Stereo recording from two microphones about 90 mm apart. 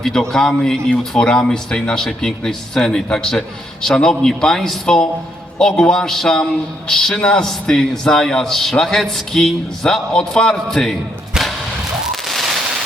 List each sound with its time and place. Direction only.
0.0 s a man's voice: 5° left (ahead or behind)
11.3 s vehicle: 5° right (ahead or behind)
12.1 s a sound: centre (ahead or behind)